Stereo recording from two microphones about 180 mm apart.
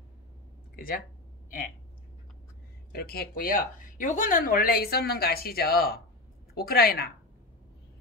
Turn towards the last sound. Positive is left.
turn(degrees=60)  # may be behind; listen again after turning